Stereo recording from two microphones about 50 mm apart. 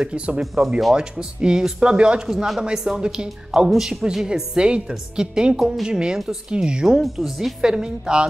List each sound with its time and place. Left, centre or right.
0.0 s a woman's voice: right
2.2 s a woman's voice: centre